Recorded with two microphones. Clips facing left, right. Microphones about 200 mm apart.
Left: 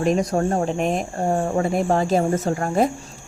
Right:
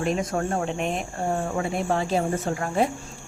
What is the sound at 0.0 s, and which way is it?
Speech, 40° left (ahead or behind).